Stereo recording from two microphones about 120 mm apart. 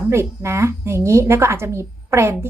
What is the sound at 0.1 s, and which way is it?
A woman's voice, 20° right (ahead or behind).